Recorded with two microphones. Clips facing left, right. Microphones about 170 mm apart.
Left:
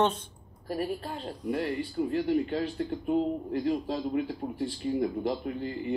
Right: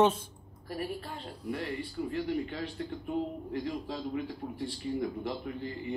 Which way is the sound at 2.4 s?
40° left (ahead or behind).